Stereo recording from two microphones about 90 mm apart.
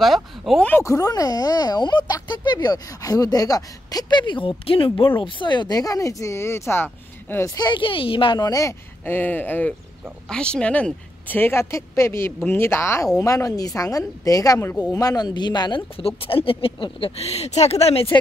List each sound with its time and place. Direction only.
0.0 s speech: centre (ahead or behind)
0.8 s speech: 40° left (ahead or behind); by 7.4 s 25° left (ahead or behind)
7.4 s speech: 50° left (ahead or behind); by 8.4 s 75° left (ahead or behind)
8.4 s a woman's voice: 40° left (ahead or behind)
9.0 s a woman's voice: 20° left (ahead or behind); by 15.8 s 55° left (ahead or behind)
16.0 s speech: 90° left